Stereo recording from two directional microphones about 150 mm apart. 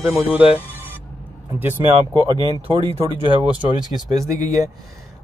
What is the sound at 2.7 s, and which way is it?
Speech, 40° right (ahead or behind).